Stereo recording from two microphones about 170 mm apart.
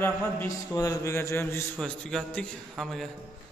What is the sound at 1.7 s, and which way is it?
A man's voice, 5° left (ahead or behind).